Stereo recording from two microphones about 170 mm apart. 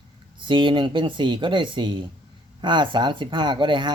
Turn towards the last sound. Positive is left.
turn(degrees=-30)  # may be behind; listen again after turning